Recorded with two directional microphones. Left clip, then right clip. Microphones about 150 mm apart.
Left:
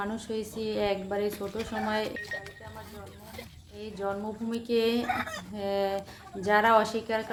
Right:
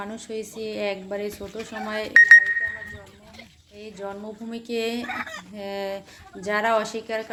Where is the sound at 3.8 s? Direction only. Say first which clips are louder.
Left 1 dB; 15° right (ahead or behind).